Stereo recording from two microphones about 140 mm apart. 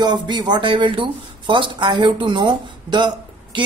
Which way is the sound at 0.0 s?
30° right (ahead or behind).